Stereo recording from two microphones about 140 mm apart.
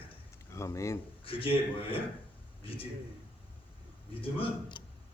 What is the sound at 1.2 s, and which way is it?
Speech, 40° left (ahead or behind).